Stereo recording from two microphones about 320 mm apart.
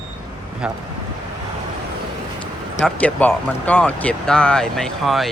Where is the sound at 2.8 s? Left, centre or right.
Centre.